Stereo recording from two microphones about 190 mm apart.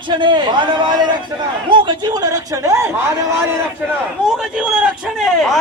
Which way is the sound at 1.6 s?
25° right (ahead or behind).